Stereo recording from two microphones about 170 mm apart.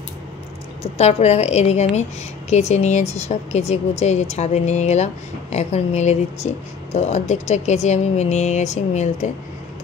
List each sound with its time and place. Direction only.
0.9 s speech: 40° left (ahead or behind)